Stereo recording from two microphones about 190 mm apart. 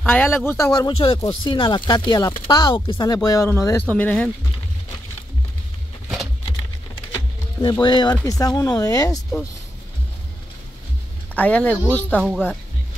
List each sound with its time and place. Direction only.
0.0 s speech: 10° left (ahead or behind)
7.6 s speech: 25° left (ahead or behind)
11.3 s speech: 5° left (ahead or behind)